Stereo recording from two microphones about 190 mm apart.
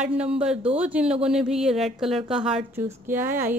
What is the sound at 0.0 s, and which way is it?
A woman's voice, 5° right (ahead or behind).